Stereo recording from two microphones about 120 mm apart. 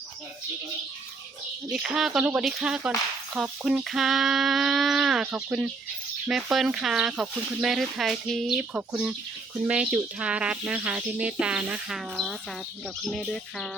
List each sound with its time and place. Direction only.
1.7 s speech: 5° right (ahead or behind)
8.7 s speech: 10° right (ahead or behind); by 13.7 s 5° left (ahead or behind)